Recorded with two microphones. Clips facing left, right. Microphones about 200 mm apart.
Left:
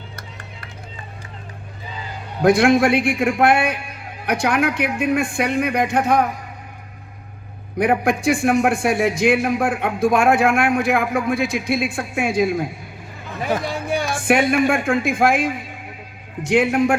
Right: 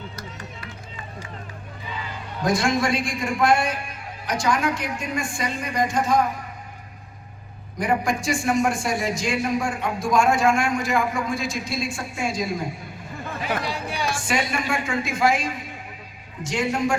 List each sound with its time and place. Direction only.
2.4 s a man's voice: 60° left (ahead or behind)
7.8 s a man's voice: 60° left (ahead or behind)